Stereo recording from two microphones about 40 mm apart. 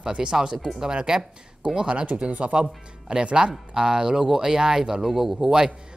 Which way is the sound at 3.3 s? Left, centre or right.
Centre.